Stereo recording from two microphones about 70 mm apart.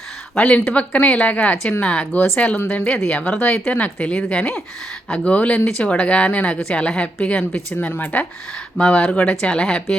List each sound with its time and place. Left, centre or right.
0.3 s speech: centre
9.3 s speech: centre